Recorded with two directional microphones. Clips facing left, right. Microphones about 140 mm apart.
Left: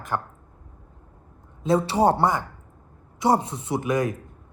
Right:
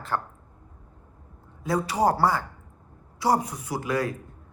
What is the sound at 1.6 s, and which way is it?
A woman's voice, 30° left (ahead or behind).